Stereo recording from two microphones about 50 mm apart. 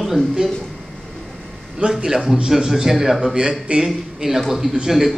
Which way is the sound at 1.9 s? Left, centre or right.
Centre.